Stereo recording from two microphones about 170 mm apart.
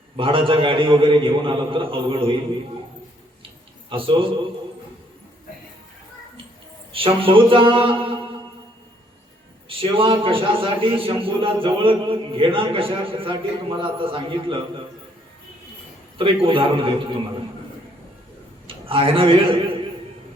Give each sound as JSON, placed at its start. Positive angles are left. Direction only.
{"t": 0.2, "sound": "a man's voice", "side_deg": -30}
{"t": 3.8, "sound": "a man's voice", "side_deg": -30}
{"t": 6.9, "sound": "a man's voice", "side_deg": -30}
{"t": 9.6, "sound": "a man's voice", "side_deg": -30}
{"t": 16.1, "sound": "a man's voice", "side_deg": -30}
{"t": 18.7, "sound": "a man's voice", "side_deg": -30}